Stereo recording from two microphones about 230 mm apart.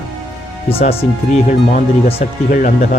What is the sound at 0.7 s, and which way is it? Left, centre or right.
Speech, left.